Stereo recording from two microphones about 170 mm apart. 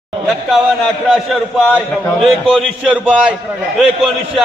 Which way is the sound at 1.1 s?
Centre (ahead or behind).